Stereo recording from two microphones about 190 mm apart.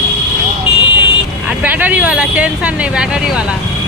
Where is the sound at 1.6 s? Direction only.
10° right (ahead or behind).